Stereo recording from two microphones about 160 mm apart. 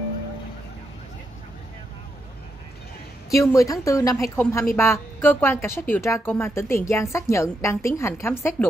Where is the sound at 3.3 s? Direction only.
20° left (ahead or behind).